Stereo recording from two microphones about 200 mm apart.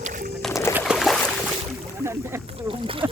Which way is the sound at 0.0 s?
40° right (ahead or behind).